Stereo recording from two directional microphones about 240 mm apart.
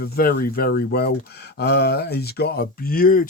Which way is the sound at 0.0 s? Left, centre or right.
Left.